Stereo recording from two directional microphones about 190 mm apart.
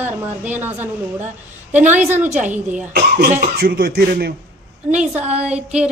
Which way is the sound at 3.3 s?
50° right (ahead or behind).